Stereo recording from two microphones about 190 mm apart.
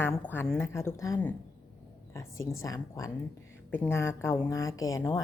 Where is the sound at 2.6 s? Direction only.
15° left (ahead or behind).